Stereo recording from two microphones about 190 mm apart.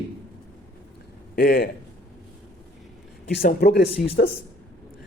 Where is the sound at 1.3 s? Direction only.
50° left (ahead or behind).